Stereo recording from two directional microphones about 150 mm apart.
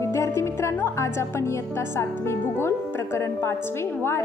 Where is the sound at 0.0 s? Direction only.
20° left (ahead or behind).